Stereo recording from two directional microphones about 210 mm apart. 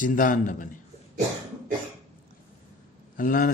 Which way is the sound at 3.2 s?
40° left (ahead or behind).